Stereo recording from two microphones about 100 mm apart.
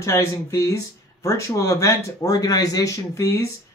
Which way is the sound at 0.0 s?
30° left (ahead or behind).